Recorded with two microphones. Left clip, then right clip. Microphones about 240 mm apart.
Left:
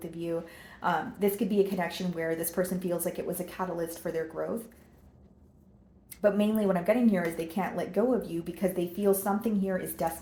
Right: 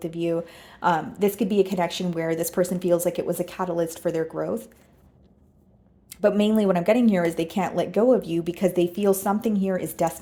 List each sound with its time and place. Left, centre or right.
0.0 s speech: right
6.1 s speech: right